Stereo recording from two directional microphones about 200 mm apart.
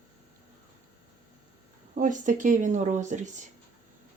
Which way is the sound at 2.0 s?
40° right (ahead or behind).